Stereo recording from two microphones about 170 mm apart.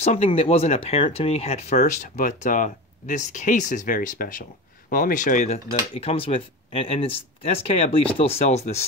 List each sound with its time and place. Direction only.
0.0 s speech: 40° left (ahead or behind)